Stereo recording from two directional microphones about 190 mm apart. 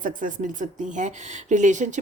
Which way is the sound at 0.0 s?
45° right (ahead or behind).